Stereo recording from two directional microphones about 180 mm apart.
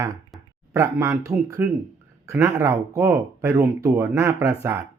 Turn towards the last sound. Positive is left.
turn(degrees=-15)  # may be behind; listen again after turning